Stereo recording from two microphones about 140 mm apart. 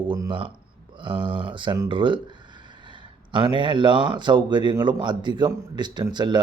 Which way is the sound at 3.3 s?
35° right (ahead or behind).